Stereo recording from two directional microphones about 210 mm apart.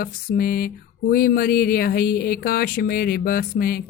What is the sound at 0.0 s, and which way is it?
A woman's voice, 45° left (ahead or behind).